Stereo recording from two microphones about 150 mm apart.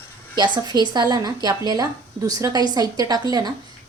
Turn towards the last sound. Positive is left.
turn(degrees=-25)  # may be behind; listen again after turning